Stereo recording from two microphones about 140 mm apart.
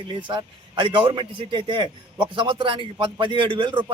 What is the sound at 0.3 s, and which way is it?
A man's voice, 35° right (ahead or behind).